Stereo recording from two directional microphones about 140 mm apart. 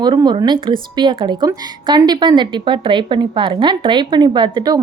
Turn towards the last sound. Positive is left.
turn(degrees=-30)  # may be behind; listen again after turning